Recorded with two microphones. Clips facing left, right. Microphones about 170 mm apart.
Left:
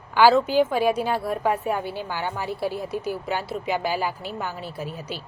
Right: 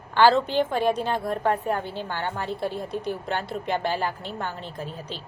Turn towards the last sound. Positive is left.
turn(degrees=10)  # may be behind; listen again after turning